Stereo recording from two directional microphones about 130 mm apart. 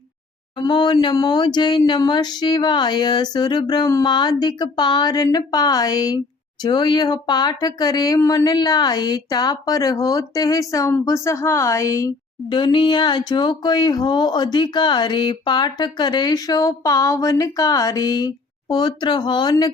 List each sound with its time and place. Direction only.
0.5 s a woman's voice: 35° left (ahead or behind)
12.5 s speech: 40° left (ahead or behind)